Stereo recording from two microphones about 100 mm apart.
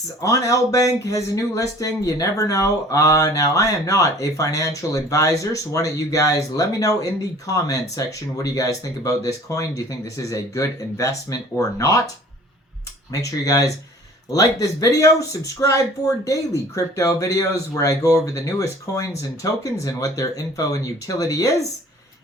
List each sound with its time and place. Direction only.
0.2 s speech: 35° left (ahead or behind)
13.1 s speech: 35° left (ahead or behind)